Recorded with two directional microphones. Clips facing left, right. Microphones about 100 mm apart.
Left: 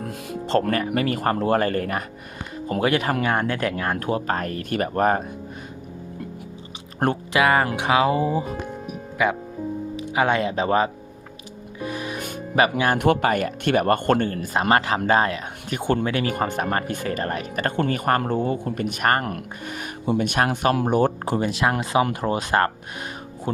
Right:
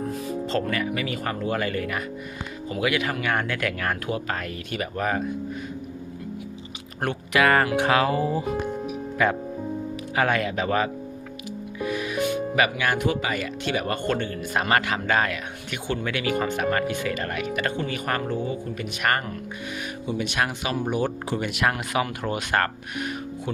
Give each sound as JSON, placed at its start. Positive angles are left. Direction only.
{"t": 0.2, "sound": "music", "side_deg": 65}
{"t": 0.7, "sound": "a man's voice", "side_deg": 45}
{"t": 4.0, "sound": "a man's voice", "side_deg": 40}
{"t": 7.3, "sound": "speech", "side_deg": 15}
{"t": 10.2, "sound": "speech", "side_deg": 25}
{"t": 11.8, "sound": "music", "side_deg": 35}
{"t": 13.0, "sound": "a man's voice", "side_deg": 60}
{"t": 14.4, "sound": "speech", "side_deg": 35}
{"t": 15.8, "sound": "a man's voice", "side_deg": 55}
{"t": 16.0, "sound": "a man's voice", "side_deg": 40}
{"t": 18.2, "sound": "a man's voice", "side_deg": 55}
{"t": 21.3, "sound": "speech", "side_deg": 30}